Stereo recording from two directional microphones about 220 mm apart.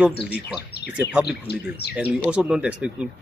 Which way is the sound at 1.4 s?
45° left (ahead or behind).